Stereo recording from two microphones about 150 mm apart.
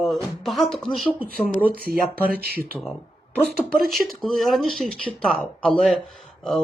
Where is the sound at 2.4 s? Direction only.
90° right.